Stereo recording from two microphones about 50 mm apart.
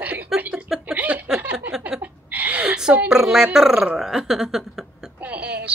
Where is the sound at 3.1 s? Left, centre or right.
Centre.